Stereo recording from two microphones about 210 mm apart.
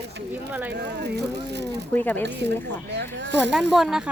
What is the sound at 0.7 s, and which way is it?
Speech, 55° right (ahead or behind).